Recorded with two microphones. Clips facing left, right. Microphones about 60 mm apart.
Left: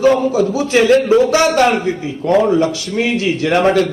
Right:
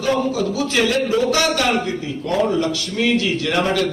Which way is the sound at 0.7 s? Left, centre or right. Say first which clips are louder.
Left 9 dB; left.